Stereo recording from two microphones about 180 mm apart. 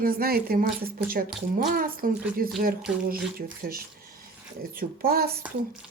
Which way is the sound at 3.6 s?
55° right (ahead or behind).